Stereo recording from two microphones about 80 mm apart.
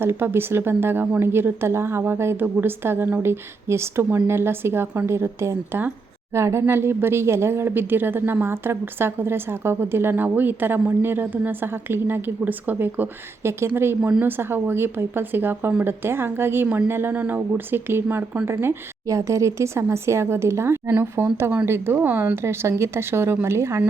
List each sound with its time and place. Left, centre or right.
0.0 s a woman's voice: right